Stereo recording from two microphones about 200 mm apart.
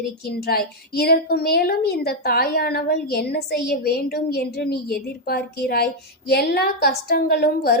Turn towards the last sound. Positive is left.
turn(degrees=50)  # may be behind; listen again after turning